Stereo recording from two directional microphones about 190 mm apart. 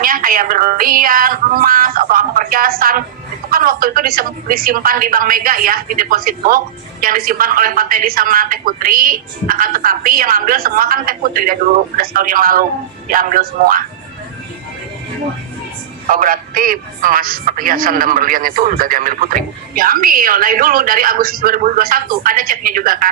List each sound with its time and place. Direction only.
0.0 s a man's voice: 45° right (ahead or behind)
16.0 s a man's voice: 45° right (ahead or behind)